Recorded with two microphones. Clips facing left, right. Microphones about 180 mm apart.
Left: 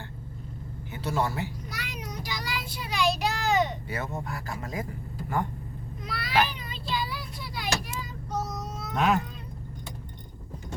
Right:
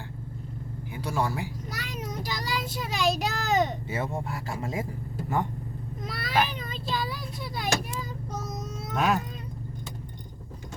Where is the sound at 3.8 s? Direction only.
25° right (ahead or behind).